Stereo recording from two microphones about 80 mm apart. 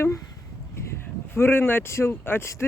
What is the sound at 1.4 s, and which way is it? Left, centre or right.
Speech, left.